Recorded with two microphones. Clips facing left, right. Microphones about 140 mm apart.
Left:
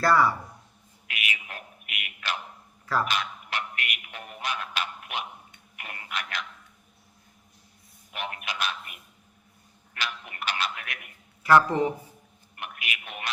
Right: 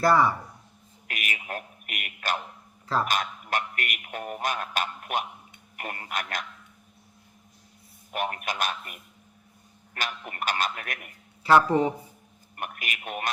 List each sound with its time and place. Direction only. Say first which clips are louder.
0.0 s speech: right 1 dB; 20° right (ahead or behind)
1.0 s a sound: right 1 dB; 45° right (ahead or behind)
3.1 s a man's voice: right 3 dB; 45° right (ahead or behind)
8.1 s speech: right 5 dB; 45° right (ahead or behind)
11.4 s speech: right 1 dB; 25° right (ahead or behind)
12.5 s speech: right 2 dB; 45° right (ahead or behind)